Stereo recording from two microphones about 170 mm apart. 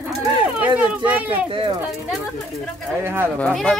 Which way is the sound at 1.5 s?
30° right (ahead or behind).